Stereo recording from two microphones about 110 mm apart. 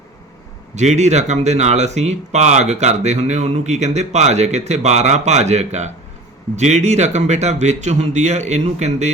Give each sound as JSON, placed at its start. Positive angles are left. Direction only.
{"t": 0.8, "sound": "speech", "side_deg": -90}